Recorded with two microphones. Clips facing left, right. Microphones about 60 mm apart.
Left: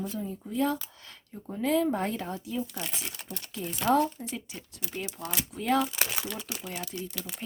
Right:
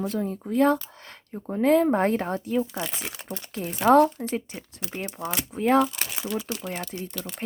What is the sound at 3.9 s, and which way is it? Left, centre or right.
Speech, right.